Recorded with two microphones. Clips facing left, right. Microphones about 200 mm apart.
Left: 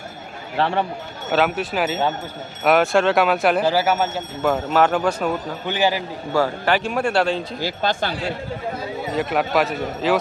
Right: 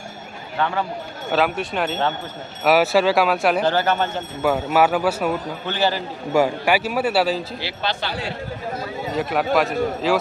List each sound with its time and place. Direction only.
0.5 s a man's voice: 30° left (ahead or behind)
1.3 s speech: centre (ahead or behind)
4.4 s a man's voice: 5° right (ahead or behind)
5.6 s speech: 15° left (ahead or behind)
6.3 s speech: 15° right (ahead or behind)
7.6 s speech: 45° left (ahead or behind)
9.1 s speech: centre (ahead or behind)